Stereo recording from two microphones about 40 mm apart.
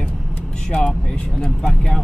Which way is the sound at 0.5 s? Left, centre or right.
Left.